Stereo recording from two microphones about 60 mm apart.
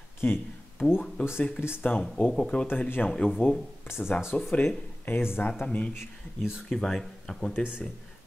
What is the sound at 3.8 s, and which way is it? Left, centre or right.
Speech, left.